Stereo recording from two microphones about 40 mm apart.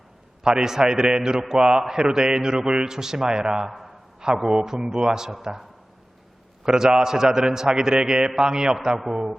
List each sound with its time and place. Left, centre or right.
0.4 s a man's voice: centre
6.7 s a man's voice: centre